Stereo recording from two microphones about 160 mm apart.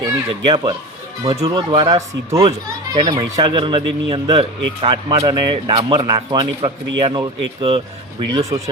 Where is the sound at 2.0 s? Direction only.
20° right (ahead or behind).